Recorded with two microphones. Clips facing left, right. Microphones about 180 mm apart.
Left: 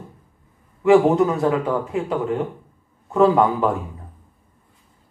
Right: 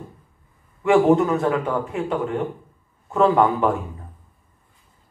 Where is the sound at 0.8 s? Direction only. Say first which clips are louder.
Left 1 dB; 15° left (ahead or behind).